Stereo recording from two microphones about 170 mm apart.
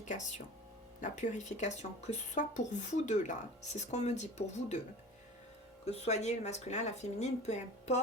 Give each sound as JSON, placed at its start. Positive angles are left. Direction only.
{"t": 0.0, "sound": "speech", "side_deg": 45}
{"t": 5.8, "sound": "speech", "side_deg": 40}